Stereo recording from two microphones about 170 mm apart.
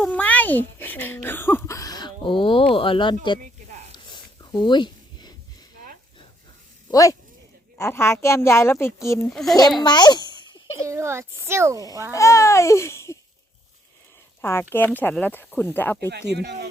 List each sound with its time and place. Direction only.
0.0 s a child's voice: 10° left (ahead or behind); by 3.4 s 30° left (ahead or behind)
3.9 s a sound: 25° left (ahead or behind)
6.9 s speech: 20° left (ahead or behind)
9.3 s a child's voice: centre (ahead or behind)
9.8 s babbling: 25° left (ahead or behind)
10.8 s speech: 15° right (ahead or behind)
12.1 s speech: 20° left (ahead or behind)
14.4 s speech: 15° left (ahead or behind)
16.0 s speech: 80° right